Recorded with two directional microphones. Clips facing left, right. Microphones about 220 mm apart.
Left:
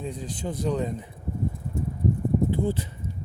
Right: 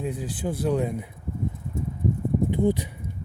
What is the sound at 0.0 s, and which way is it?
Speech, 5° right (ahead or behind).